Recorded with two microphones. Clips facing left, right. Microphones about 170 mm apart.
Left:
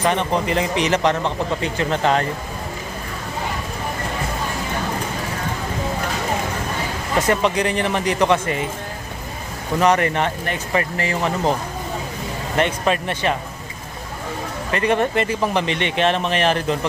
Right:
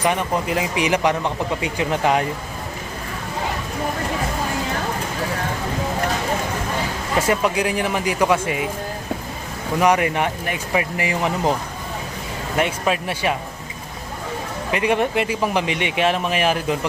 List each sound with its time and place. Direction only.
0.0 s speech: 10° right (ahead or behind)
7.2 s speech: 10° right (ahead or behind)
9.8 s speech: 10° right (ahead or behind)
12.5 s speech: 5° right (ahead or behind)
14.7 s speech: 10° right (ahead or behind)